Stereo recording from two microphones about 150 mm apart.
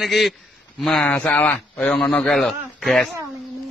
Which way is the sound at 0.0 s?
Centre (ahead or behind).